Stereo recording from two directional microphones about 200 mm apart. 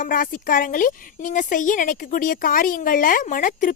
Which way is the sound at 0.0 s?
45° left (ahead or behind).